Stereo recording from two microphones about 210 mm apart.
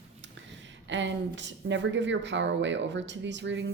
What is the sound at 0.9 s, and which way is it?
Speech, 60° right (ahead or behind).